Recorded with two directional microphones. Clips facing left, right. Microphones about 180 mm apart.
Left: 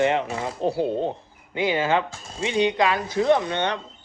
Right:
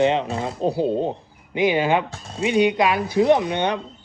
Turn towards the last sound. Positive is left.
turn(degrees=-15)  # may be behind; listen again after turning